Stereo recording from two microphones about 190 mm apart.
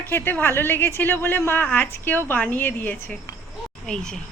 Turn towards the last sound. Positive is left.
turn(degrees=5)  # may be behind; listen again after turning